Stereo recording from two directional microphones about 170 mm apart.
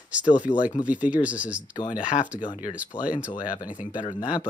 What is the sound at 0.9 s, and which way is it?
Speech, 10° right (ahead or behind).